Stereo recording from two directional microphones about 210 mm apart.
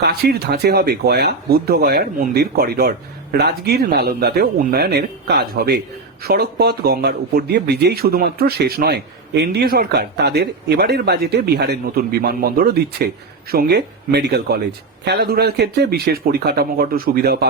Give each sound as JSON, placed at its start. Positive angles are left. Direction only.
{"t": 0.0, "sound": "a man's voice", "side_deg": -50}